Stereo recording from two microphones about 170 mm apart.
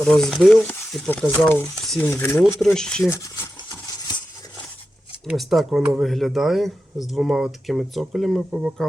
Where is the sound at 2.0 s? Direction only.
15° left (ahead or behind).